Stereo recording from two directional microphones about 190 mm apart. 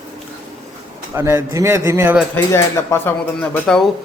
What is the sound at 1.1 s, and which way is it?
Speech, 10° right (ahead or behind).